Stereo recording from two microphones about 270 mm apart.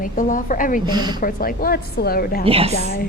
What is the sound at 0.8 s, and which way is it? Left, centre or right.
Speech, centre.